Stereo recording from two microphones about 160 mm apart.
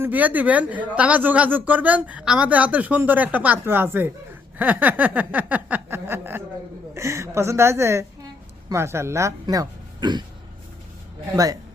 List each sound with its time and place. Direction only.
0.0 s speech: 10° right (ahead or behind); by 10.2 s 25° right (ahead or behind)